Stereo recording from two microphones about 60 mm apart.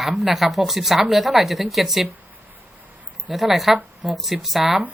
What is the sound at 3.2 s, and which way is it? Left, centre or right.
Speech, centre.